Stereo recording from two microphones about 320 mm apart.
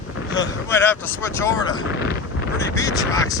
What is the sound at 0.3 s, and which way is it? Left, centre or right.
Speech, centre.